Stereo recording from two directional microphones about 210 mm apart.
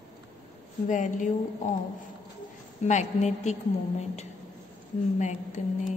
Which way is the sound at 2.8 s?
35° left (ahead or behind).